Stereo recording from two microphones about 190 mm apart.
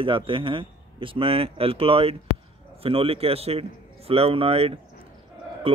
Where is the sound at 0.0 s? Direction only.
25° right (ahead or behind).